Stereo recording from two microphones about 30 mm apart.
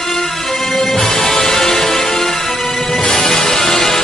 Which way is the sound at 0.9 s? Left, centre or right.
Left.